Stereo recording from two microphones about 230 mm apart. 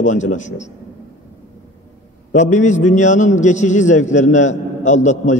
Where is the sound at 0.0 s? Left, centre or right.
Left.